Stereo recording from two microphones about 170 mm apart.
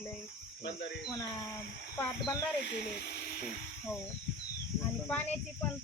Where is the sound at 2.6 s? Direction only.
75° left (ahead or behind).